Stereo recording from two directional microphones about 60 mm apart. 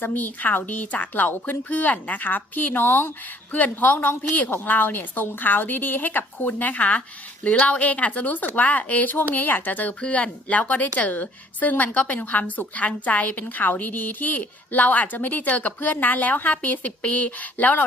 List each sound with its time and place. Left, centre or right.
0.0 s speech: left